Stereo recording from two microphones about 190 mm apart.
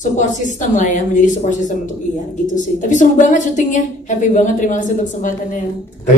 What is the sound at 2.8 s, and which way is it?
Speech, 40° left (ahead or behind).